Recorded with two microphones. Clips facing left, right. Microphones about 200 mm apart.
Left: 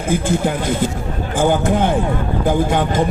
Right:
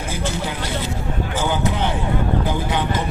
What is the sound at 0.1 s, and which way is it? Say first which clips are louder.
Speech: left 10 dB; 50° left (ahead or behind).